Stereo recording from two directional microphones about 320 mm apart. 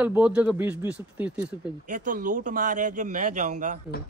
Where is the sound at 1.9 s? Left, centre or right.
Right.